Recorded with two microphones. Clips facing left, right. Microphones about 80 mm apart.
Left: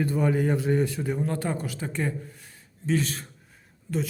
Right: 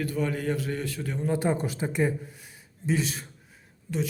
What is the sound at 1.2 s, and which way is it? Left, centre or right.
Speech, centre.